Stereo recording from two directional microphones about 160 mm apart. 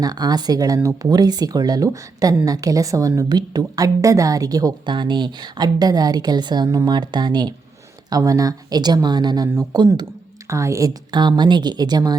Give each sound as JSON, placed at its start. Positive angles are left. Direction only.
{"t": 0.0, "sound": "speech", "side_deg": -25}